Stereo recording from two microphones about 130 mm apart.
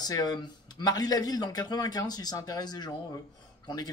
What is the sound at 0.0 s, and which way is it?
Speech, 30° left (ahead or behind).